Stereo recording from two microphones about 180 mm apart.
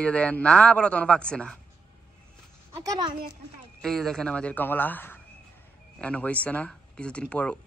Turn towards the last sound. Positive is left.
turn(degrees=5)  # may be behind; listen again after turning